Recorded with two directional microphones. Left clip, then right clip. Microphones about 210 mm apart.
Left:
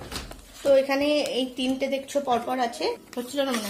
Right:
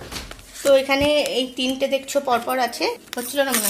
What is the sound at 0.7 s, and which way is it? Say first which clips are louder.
Speech: right 4 dB; 20° right (ahead or behind).